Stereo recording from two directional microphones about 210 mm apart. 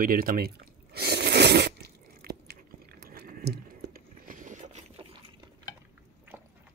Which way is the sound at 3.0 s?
45° right (ahead or behind).